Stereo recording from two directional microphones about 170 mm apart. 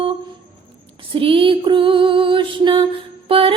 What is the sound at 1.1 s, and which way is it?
Female singing, 30° right (ahead or behind).